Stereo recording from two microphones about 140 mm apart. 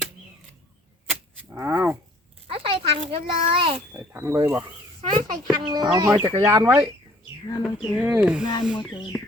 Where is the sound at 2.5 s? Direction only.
40° right (ahead or behind).